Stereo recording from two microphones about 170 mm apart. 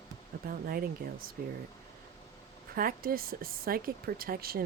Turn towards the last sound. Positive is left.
turn(degrees=-60)  # may be behind; listen again after turning